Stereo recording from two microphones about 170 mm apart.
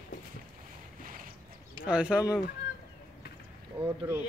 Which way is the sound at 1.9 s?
5° right (ahead or behind).